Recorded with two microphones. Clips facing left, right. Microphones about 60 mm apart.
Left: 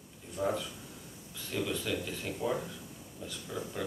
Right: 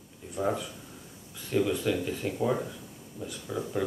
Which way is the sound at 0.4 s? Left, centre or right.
Centre.